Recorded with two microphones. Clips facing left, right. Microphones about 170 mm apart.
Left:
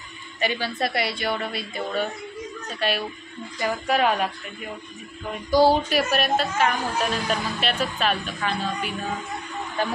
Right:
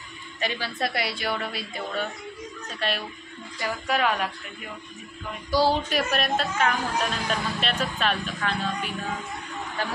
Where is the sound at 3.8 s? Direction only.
30° left (ahead or behind).